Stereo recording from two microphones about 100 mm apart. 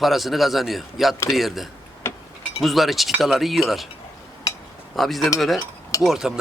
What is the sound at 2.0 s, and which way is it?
Chink, 25° left (ahead or behind).